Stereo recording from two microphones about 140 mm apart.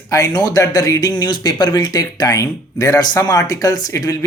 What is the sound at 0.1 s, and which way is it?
Speech, 25° left (ahead or behind).